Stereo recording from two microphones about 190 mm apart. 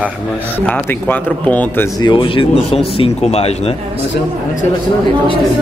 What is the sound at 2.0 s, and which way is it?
Speech, 25° left (ahead or behind).